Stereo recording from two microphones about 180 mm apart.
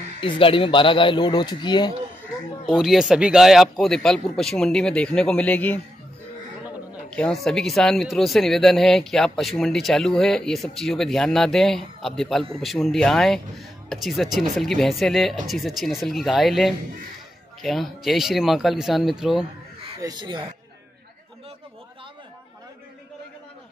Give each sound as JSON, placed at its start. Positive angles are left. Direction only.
{"t": 0.2, "sound": "a man's voice", "side_deg": 30}
{"t": 2.6, "sound": "speech", "side_deg": 0}
{"t": 7.1, "sound": "speech", "side_deg": 5}
{"t": 20.0, "sound": "speech", "side_deg": -25}